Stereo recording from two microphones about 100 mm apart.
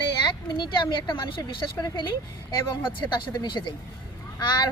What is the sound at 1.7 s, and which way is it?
Speech, 45° left (ahead or behind).